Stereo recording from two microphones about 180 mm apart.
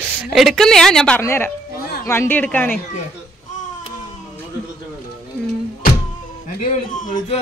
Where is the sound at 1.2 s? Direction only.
15° left (ahead or behind).